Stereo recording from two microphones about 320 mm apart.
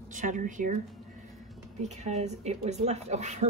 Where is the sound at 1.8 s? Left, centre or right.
Right.